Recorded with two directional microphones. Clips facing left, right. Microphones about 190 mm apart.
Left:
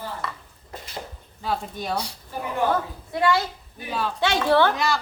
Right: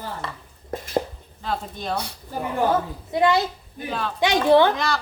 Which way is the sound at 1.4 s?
10° left (ahead or behind).